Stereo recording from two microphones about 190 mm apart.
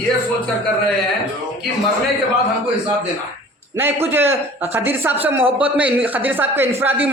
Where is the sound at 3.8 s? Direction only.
10° right (ahead or behind).